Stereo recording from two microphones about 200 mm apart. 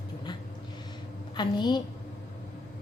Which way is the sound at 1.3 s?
20° left (ahead or behind).